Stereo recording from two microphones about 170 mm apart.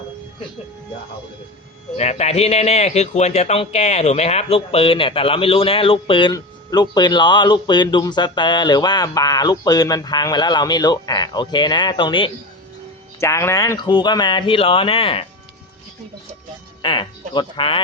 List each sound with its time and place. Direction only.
2.0 s speech: 40° left (ahead or behind)
13.1 s speech: 15° left (ahead or behind); by 15.3 s 35° left (ahead or behind)
16.8 s speech: 25° left (ahead or behind)